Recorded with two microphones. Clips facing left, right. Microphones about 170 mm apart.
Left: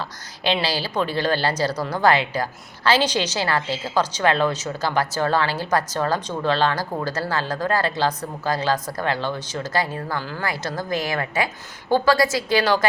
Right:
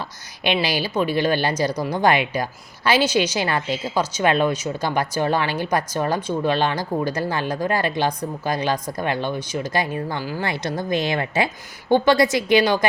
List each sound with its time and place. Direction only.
0.0 s a woman's voice: 15° right (ahead or behind)